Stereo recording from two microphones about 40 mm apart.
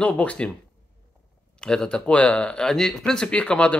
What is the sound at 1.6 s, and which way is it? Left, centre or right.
Speech, left.